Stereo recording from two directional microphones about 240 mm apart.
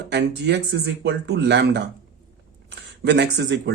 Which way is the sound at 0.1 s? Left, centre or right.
Right.